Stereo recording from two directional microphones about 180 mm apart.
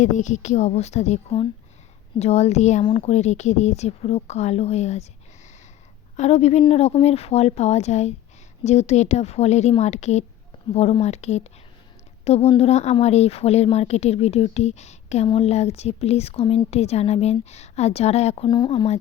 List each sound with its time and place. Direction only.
0.0 s a woman's voice: 45° left (ahead or behind)
6.1 s a woman's voice: 35° left (ahead or behind)
18.4 s speech: 25° left (ahead or behind)